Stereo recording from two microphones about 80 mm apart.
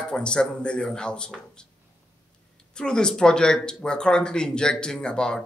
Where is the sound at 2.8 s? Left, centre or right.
Centre.